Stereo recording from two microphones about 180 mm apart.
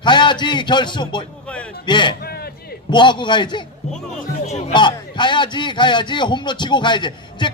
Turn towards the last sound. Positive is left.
turn(degrees=25)  # may be behind; listen again after turning